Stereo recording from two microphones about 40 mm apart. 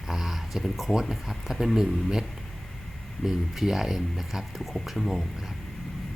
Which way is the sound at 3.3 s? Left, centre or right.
Centre.